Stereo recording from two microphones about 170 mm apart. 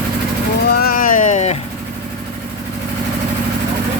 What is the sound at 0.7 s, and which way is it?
Music, 60° left (ahead or behind).